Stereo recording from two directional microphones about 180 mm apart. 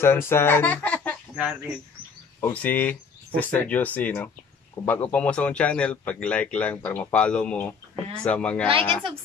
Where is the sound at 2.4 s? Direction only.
10° left (ahead or behind).